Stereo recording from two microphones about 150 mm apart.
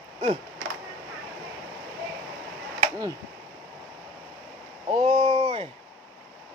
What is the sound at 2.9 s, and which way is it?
Speech, 20° right (ahead or behind).